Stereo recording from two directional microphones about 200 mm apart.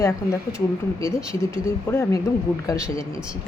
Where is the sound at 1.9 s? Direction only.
10° left (ahead or behind).